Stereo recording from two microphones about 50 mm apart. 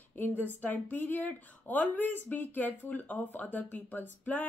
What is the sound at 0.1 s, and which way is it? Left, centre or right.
Speech, left.